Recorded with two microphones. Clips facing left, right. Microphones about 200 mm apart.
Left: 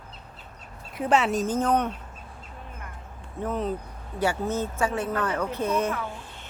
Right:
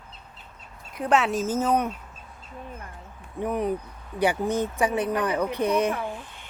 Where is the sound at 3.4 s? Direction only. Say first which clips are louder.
Right 2 dB; 15° right (ahead or behind).